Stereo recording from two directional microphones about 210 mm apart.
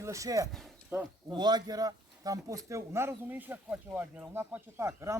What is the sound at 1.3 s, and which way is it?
A man's voice, 20° right (ahead or behind).